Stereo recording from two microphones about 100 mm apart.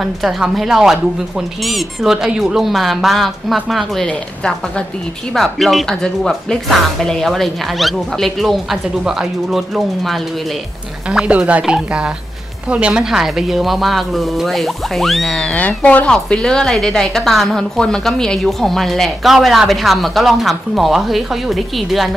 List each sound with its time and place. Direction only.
0.0 s speech: 5° right (ahead or behind)